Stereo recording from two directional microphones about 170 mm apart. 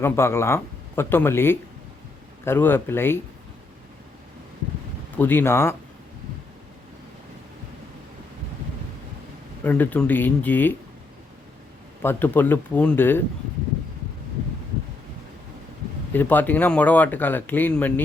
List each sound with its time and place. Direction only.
0.0 s speech: 15° left (ahead or behind)
5.1 s speech: 10° left (ahead or behind)
9.6 s speech: 10° left (ahead or behind)
12.0 s speech: 10° left (ahead or behind)
16.1 s speech: 10° left (ahead or behind)